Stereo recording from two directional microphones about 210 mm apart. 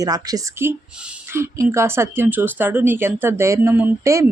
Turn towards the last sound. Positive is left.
turn(degrees=-10)  # may be behind; listen again after turning